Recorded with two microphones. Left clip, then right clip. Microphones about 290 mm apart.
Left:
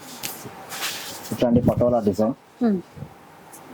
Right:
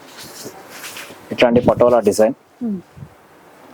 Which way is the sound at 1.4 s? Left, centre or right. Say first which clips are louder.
Right 8 dB; centre.